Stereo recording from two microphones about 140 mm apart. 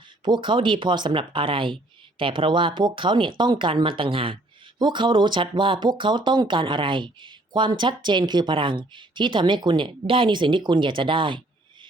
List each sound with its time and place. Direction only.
0.3 s speech: 35° right (ahead or behind)